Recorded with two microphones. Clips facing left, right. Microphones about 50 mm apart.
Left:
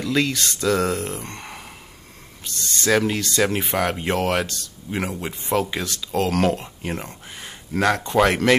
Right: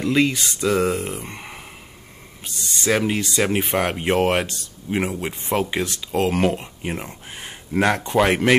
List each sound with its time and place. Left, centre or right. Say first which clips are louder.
0.1 s speech: right 2 dB; centre
6.3 s speech: even; centre
7.2 s speech: right 2 dB; right